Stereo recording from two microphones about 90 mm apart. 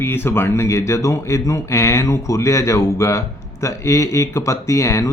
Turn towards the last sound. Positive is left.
turn(degrees=35)  # may be behind; listen again after turning